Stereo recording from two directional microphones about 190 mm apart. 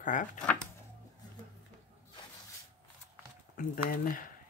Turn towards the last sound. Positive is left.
turn(degrees=45)  # may be behind; listen again after turning